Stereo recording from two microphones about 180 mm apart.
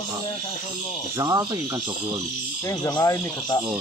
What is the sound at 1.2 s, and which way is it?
Speech, 20° right (ahead or behind).